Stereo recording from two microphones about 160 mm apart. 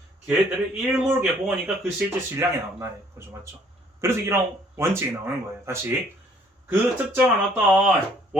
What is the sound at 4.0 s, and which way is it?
Speech, 15° right (ahead or behind).